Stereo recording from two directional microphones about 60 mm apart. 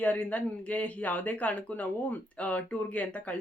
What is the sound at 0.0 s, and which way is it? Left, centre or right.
Speech, left.